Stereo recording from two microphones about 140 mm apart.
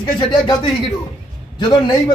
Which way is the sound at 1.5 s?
30° left (ahead or behind).